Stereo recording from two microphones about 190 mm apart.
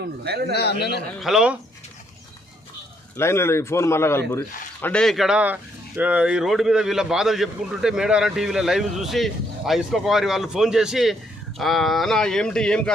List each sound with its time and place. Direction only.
0.3 s a man's voice: 55° right (ahead or behind)
0.5 s a man's voice: 60° left (ahead or behind)
1.2 s a man's voice: centre (ahead or behind)
3.2 s a man's voice: 15° left (ahead or behind)